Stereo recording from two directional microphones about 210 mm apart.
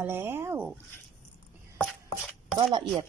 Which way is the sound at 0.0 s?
10° right (ahead or behind).